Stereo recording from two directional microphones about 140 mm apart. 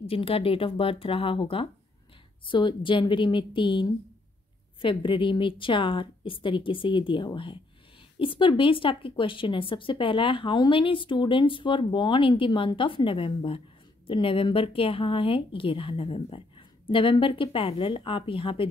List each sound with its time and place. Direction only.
0.0 s speech: 45° left (ahead or behind)
4.8 s speech: 35° left (ahead or behind)